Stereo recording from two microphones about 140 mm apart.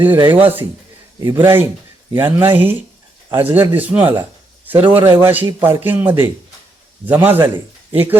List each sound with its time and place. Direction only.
0.0 s a man's voice: 15° right (ahead or behind)